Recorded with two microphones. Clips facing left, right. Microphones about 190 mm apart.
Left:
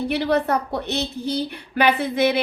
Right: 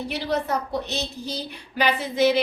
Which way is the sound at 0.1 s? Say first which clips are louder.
Left 4 dB; 60° left (ahead or behind).